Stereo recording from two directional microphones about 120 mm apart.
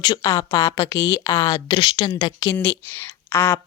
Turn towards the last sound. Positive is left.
turn(degrees=20)  # may be behind; listen again after turning